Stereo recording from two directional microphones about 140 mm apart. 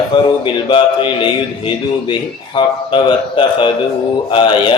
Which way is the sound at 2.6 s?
35° left (ahead or behind).